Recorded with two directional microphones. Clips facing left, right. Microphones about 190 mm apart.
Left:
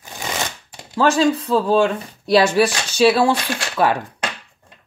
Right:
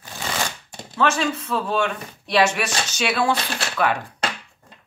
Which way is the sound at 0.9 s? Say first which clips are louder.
Left 6 dB; 35° left (ahead or behind).